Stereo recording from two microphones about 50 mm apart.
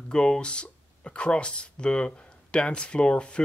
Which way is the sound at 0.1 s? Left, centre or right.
Centre.